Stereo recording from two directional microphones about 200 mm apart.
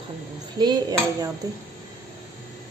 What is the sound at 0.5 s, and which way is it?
Speech, 20° right (ahead or behind).